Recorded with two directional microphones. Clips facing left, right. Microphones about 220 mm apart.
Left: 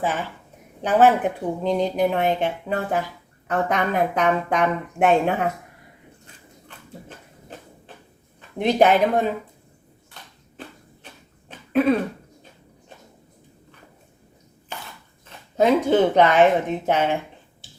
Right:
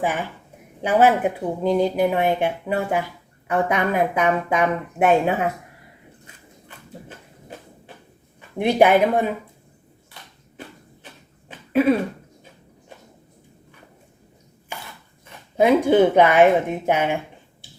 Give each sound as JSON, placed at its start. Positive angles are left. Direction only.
{"t": 0.0, "sound": "speech", "side_deg": -15}
{"t": 8.4, "sound": "speech", "side_deg": -10}
{"t": 11.4, "sound": "cough", "side_deg": -5}
{"t": 15.5, "sound": "speech", "side_deg": -10}